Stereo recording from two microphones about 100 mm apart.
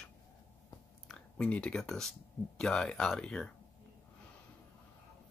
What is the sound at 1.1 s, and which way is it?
Speech, 10° left (ahead or behind).